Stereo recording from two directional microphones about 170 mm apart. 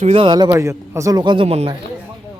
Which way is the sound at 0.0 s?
35° right (ahead or behind).